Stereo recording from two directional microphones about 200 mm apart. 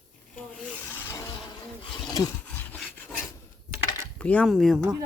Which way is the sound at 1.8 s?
25° left (ahead or behind).